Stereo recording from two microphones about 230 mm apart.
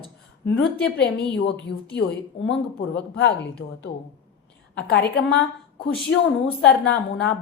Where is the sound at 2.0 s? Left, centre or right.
Left.